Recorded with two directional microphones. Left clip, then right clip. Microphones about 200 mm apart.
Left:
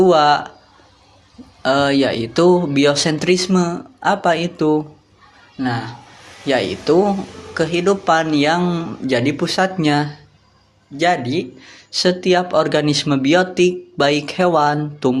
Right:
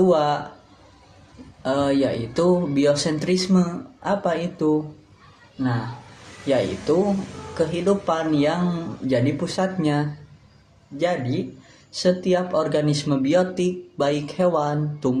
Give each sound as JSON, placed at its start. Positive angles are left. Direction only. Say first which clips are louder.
{"t": 0.0, "sound": "speech", "louder": "left 7 dB", "side_deg": 15}
{"t": 1.6, "sound": "speech", "louder": "left 6 dB", "side_deg": 15}